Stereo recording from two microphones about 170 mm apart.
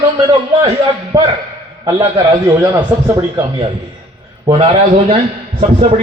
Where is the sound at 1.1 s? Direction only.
25° right (ahead or behind).